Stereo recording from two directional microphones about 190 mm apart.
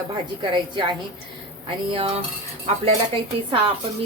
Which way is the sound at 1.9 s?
30° right (ahead or behind).